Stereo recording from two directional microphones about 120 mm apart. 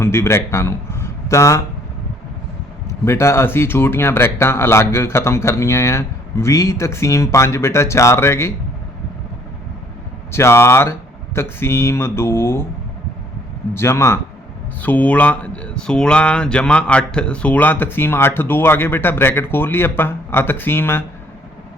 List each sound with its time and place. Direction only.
0.0 s speech: 20° left (ahead or behind)
3.0 s speech: 20° left (ahead or behind)
10.3 s speech: 20° left (ahead or behind)
13.7 s speech: 20° left (ahead or behind)